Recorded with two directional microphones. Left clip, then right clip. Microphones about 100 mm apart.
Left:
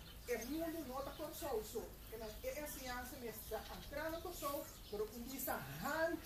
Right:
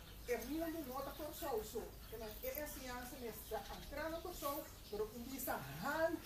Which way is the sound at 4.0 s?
Centre (ahead or behind).